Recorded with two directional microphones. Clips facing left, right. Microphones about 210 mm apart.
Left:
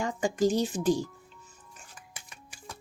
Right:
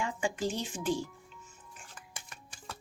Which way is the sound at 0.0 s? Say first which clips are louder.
Left 6 dB; 40° left (ahead or behind).